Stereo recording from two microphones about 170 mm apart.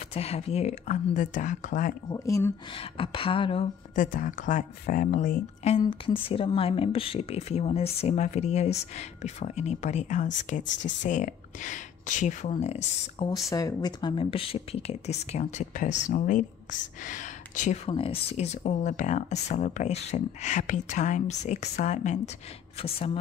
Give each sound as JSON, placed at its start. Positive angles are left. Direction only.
{"t": 0.1, "sound": "speech", "side_deg": 35}
{"t": 2.0, "sound": "speech", "side_deg": 20}
{"t": 2.7, "sound": "speech", "side_deg": 30}
{"t": 3.9, "sound": "speech", "side_deg": 50}
{"t": 5.6, "sound": "speech", "side_deg": 35}
{"t": 10.6, "sound": "speech", "side_deg": 90}
{"t": 11.0, "sound": "speech", "side_deg": 50}
{"t": 13.5, "sound": "speech", "side_deg": 20}